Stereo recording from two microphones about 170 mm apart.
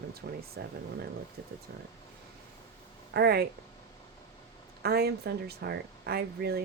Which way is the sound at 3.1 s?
65° right (ahead or behind).